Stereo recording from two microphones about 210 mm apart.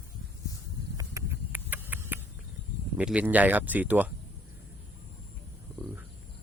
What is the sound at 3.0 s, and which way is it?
Speech, 5° right (ahead or behind).